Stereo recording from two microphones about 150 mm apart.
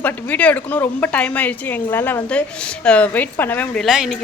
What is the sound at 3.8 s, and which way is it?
Speech, centre (ahead or behind).